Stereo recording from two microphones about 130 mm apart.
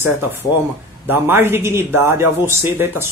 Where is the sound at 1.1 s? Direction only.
15° right (ahead or behind).